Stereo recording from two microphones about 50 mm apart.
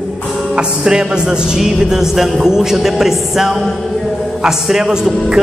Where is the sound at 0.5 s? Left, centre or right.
Centre.